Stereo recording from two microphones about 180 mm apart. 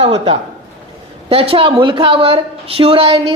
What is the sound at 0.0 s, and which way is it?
A woman's voice, 35° right (ahead or behind).